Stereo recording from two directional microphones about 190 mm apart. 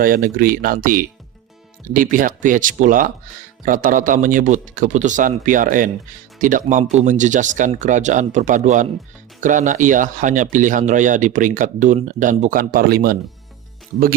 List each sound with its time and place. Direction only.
0.0 s speech: 50° right (ahead or behind)